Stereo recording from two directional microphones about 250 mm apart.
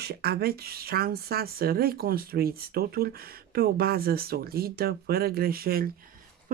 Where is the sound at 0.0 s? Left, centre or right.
Right.